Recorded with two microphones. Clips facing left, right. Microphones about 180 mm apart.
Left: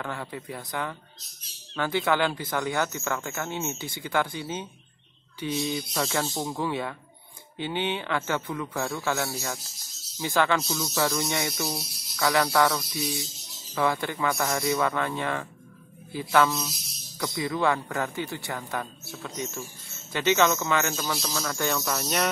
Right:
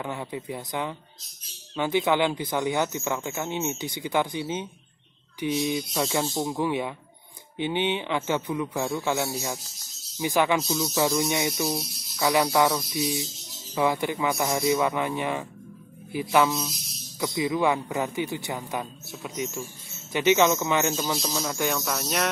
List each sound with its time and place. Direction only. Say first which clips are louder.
0.0 s speech: right 2 dB; 15° right (ahead or behind)
21.8 s cricket: even; centre (ahead or behind)